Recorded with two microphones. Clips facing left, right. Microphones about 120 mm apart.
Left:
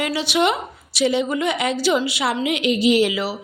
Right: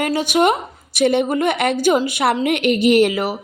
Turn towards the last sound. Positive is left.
turn(degrees=-50)  # may be behind; listen again after turning